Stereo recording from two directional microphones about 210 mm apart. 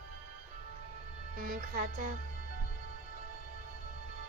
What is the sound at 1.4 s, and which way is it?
Speech, 45° right (ahead or behind).